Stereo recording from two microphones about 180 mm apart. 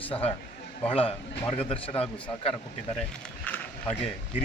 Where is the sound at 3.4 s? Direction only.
10° left (ahead or behind).